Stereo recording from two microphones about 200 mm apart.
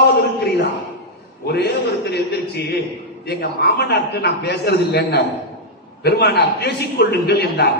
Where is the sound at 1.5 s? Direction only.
55° left (ahead or behind).